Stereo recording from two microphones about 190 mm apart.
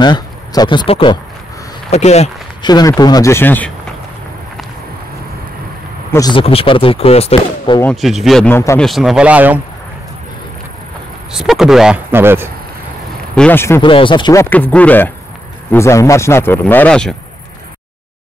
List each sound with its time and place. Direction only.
0.0 s speech: 20° left (ahead or behind)
2.6 s speech: 20° left (ahead or behind)
6.1 s speech: 25° left (ahead or behind)
7.9 s speech: centre (ahead or behind)
8.8 s speech: centre (ahead or behind)
11.3 s speech: centre (ahead or behind)
13.4 s speech: 10° left (ahead or behind)
13.7 s speech: 25° left (ahead or behind); by 17.1 s 5° left (ahead or behind)